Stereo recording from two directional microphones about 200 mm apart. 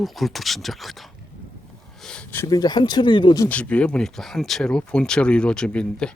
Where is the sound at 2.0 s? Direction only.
5° left (ahead or behind); by 3.4 s 25° left (ahead or behind).